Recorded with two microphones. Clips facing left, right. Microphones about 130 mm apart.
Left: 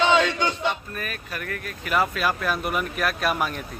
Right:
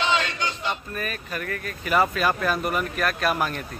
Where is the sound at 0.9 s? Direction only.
Centre (ahead or behind).